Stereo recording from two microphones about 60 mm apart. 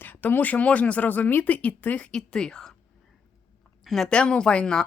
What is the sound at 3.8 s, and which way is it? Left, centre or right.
Speech, centre.